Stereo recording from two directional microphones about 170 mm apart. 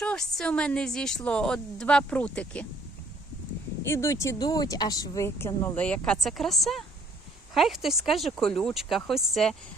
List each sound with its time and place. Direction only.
0.0 s a woman's voice: 5° left (ahead or behind)
3.8 s a woman's voice: 15° left (ahead or behind)